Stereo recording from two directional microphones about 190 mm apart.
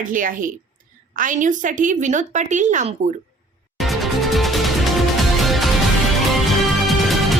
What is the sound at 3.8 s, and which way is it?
Music, centre (ahead or behind).